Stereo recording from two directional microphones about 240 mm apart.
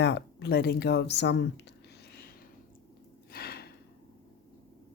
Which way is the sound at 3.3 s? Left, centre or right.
Left.